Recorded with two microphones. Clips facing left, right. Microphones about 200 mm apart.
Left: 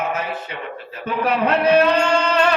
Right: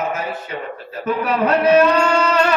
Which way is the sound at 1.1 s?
40° right (ahead or behind).